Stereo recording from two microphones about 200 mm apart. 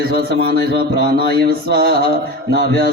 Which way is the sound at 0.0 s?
50° right (ahead or behind).